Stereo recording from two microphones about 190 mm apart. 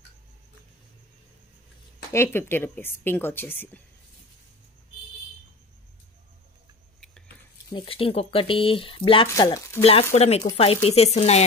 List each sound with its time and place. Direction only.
2.1 s speech: 10° left (ahead or behind)
7.7 s speech: 30° left (ahead or behind)
9.3 s speech: 15° left (ahead or behind)
9.8 s speech: 30° left (ahead or behind)